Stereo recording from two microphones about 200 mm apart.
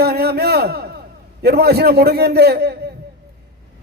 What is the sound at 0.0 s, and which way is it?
A man's voice, 55° right (ahead or behind).